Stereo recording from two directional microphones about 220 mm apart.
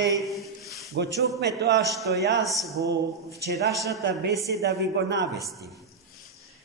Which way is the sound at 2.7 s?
15° right (ahead or behind).